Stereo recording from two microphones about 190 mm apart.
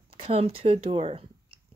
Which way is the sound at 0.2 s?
30° right (ahead or behind).